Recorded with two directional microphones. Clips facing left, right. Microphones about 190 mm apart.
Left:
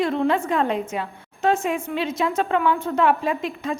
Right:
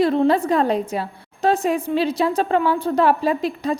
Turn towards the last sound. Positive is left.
turn(degrees=-35)  # may be behind; listen again after turning